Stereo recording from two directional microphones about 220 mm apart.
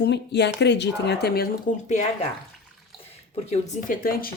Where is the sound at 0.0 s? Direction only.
50° left (ahead or behind).